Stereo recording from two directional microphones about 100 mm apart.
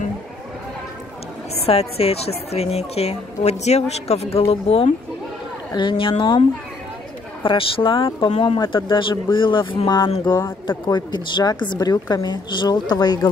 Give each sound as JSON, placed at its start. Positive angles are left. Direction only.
{"t": 1.7, "sound": "a woman's voice", "side_deg": 90}
{"t": 5.8, "sound": "speech", "side_deg": 55}
{"t": 7.4, "sound": "a woman's voice", "side_deg": 60}
{"t": 10.3, "sound": "speech", "side_deg": 25}
{"t": 10.9, "sound": "a woman's voice", "side_deg": 45}